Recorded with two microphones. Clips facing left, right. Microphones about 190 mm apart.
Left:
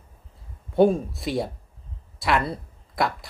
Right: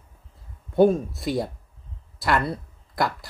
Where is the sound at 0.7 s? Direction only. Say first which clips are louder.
Right 1 dB; centre (ahead or behind).